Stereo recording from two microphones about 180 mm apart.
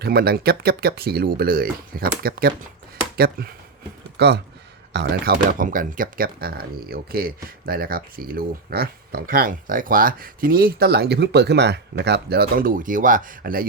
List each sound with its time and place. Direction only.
0.0 s speech: 60° right (ahead or behind)
4.2 s speech: 65° right (ahead or behind)
4.9 s speech: 55° right (ahead or behind)